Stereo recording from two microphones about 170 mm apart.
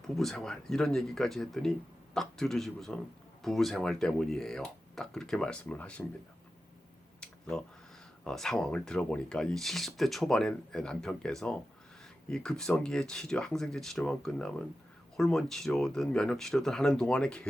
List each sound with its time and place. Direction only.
0.2 s speech: centre (ahead or behind)
7.2 s a sound: 5° left (ahead or behind)
8.2 s speech: 5° left (ahead or behind)